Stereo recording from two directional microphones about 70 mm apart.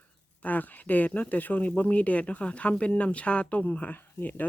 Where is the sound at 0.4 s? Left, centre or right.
Left.